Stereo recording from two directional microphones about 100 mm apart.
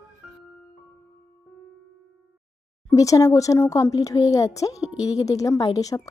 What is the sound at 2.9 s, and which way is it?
A woman's voice, 35° left (ahead or behind).